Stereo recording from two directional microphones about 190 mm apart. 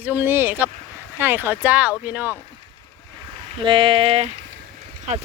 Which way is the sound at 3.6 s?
25° right (ahead or behind).